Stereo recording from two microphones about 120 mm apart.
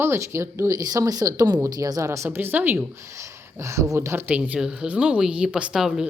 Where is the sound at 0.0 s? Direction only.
20° right (ahead or behind).